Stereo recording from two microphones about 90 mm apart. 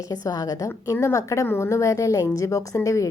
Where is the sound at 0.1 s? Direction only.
45° left (ahead or behind).